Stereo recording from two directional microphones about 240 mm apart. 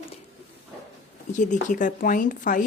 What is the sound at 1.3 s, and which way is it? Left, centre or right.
Speech, left.